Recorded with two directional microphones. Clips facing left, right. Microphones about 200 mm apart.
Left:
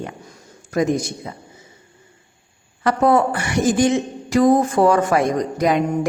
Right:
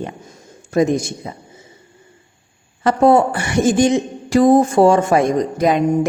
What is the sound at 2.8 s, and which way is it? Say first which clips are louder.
Speech: right 3 dB; 25° right (ahead or behind).